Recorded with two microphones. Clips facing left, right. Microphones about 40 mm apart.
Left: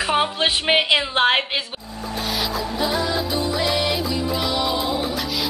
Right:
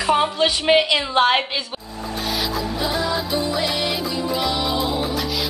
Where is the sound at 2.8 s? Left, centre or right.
Centre.